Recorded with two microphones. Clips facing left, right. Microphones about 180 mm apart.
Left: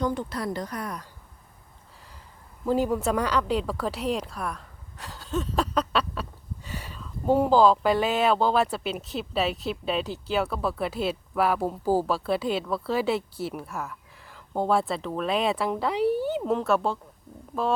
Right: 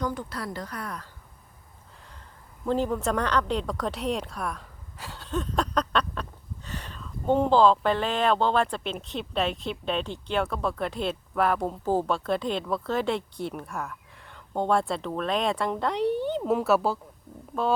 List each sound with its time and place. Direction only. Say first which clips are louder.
0.0 s speech: left 3 dB; 25° left (ahead or behind)
2.6 s speech: left 2 dB; 10° left (ahead or behind)